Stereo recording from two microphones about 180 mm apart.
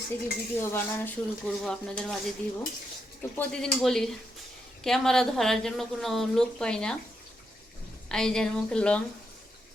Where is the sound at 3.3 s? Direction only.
5° left (ahead or behind).